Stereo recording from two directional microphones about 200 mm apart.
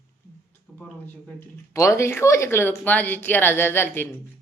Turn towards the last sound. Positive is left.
turn(degrees=10)  # may be behind; listen again after turning